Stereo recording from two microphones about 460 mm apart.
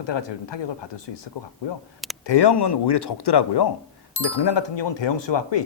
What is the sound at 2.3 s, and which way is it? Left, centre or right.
Speech, left.